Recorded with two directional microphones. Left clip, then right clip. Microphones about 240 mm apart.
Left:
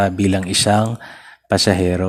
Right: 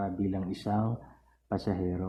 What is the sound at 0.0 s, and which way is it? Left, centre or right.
Speech, left.